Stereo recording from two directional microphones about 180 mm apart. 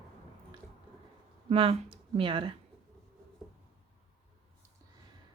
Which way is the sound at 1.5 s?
30° right (ahead or behind).